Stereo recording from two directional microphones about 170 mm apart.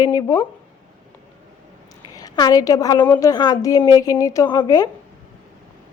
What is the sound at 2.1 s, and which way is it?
Speech, 25° left (ahead or behind).